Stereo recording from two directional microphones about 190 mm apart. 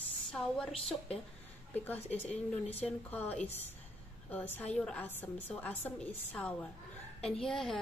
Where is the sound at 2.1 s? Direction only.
35° left (ahead or behind).